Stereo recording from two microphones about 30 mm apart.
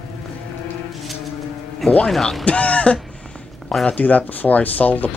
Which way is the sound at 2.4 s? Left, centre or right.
Left.